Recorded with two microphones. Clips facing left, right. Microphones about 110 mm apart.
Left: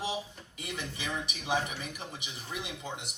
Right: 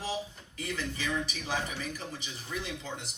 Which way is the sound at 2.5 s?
15° left (ahead or behind).